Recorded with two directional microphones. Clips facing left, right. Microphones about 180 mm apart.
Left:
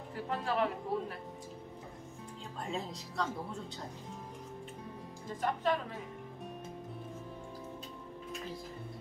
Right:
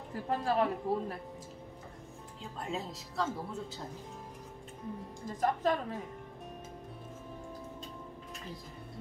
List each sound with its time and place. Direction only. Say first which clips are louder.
0.1 s a woman's voice: right 3 dB; 40° right (ahead or behind)
2.6 s a woman's voice: right 1 dB; centre (ahead or behind)
5.4 s a woman's voice: right 2 dB; 40° right (ahead or behind)